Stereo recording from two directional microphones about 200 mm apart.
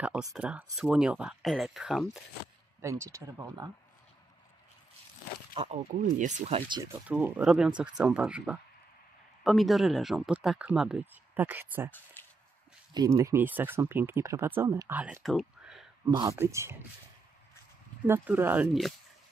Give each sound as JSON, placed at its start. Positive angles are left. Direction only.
{"t": 0.3, "sound": "speech", "side_deg": -5}
{"t": 2.8, "sound": "speech", "side_deg": -15}
{"t": 5.5, "sound": "speech", "side_deg": -30}
{"t": 5.9, "sound": "speech", "side_deg": -40}
{"t": 6.8, "sound": "speech", "side_deg": -10}
{"t": 12.9, "sound": "speech", "side_deg": -15}
{"t": 16.1, "sound": "speech", "side_deg": -15}
{"t": 18.0, "sound": "speech", "side_deg": -10}